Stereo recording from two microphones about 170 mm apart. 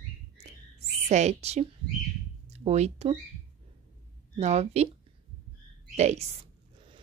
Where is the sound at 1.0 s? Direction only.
40° right (ahead or behind).